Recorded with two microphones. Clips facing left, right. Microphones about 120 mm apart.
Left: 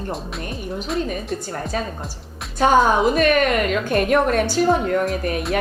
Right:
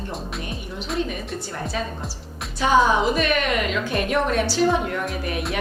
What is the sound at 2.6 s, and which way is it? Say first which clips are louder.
A woman's voice: left 3 dB; 50° left (ahead or behind).